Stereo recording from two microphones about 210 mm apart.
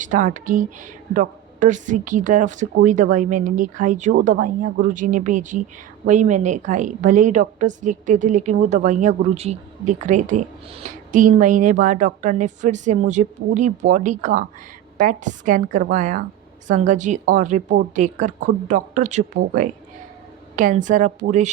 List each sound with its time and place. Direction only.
0.0 s a woman's voice: 35° right (ahead or behind)